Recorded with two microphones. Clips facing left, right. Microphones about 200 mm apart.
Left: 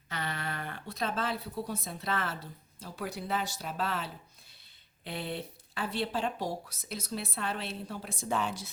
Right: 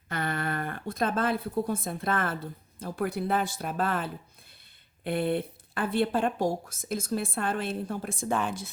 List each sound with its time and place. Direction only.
0.1 s speech: 50° right (ahead or behind)